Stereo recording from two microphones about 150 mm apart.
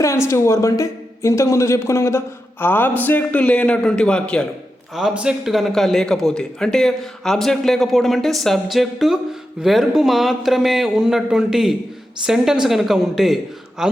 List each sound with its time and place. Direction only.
0.0 s a man's voice: 20° left (ahead or behind)
4.9 s a man's voice: 5° right (ahead or behind)